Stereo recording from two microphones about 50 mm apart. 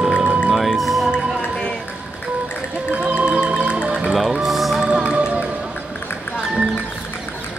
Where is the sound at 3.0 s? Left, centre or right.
Right.